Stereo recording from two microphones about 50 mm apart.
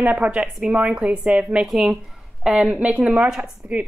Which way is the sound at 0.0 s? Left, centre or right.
Right.